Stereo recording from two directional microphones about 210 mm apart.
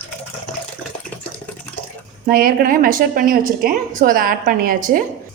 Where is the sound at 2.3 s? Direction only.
45° right (ahead or behind).